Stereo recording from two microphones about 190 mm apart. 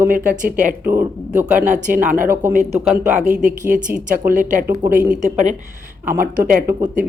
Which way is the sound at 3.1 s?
40° right (ahead or behind).